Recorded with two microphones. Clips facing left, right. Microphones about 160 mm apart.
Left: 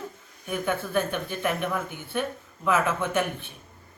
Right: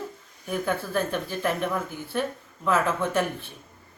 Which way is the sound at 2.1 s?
Centre (ahead or behind).